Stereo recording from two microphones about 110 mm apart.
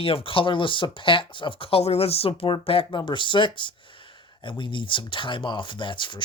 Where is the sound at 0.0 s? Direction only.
60° left (ahead or behind).